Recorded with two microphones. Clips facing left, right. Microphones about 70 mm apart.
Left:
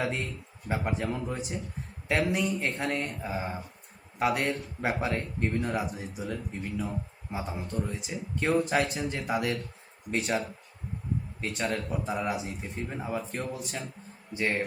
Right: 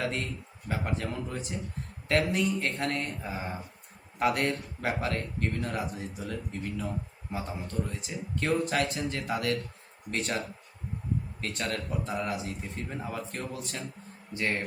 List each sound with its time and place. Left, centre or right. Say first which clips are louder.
0.0 s a man's voice: left 1 dB; centre